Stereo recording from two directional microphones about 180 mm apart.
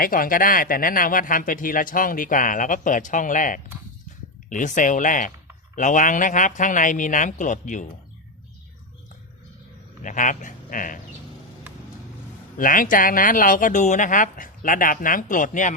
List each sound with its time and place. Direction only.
0.0 s speech: 50° left (ahead or behind)
10.0 s speech: 45° left (ahead or behind)
12.5 s speech: 50° left (ahead or behind)